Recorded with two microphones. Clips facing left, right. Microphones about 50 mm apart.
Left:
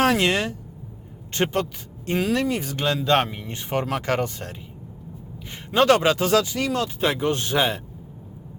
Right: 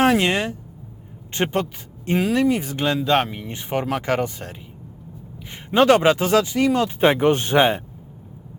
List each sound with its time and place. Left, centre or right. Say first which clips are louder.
0.0 s speech: right 2 dB; centre